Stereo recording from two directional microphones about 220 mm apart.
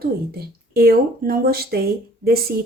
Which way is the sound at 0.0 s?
45° right (ahead or behind).